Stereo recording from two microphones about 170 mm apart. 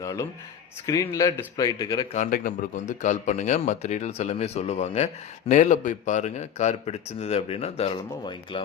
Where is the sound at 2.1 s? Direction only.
50° left (ahead or behind).